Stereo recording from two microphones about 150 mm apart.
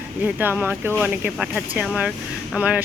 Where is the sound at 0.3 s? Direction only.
10° right (ahead or behind).